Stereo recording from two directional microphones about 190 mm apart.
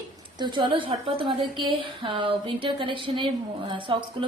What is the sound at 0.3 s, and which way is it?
A woman's voice, 25° right (ahead or behind).